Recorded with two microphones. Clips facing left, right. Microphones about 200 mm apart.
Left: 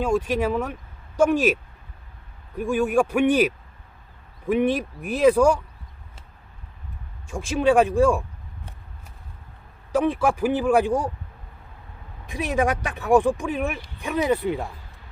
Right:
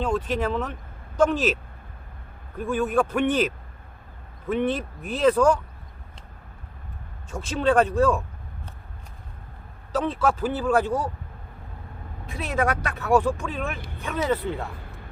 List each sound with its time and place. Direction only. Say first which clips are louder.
0.0 s speech: left 3 dB; 10° left (ahead or behind)
2.6 s speech: left 2 dB; 10° left (ahead or behind)
7.3 s speech: left 3 dB; 10° left (ahead or behind)
9.9 s speech: left 3 dB; 15° left (ahead or behind)
12.2 s speech: left 3 dB; 15° left (ahead or behind)
13.7 s speech: right 1 dB; 55° right (ahead or behind)
14.0 s speech: left 3 dB; 15° left (ahead or behind)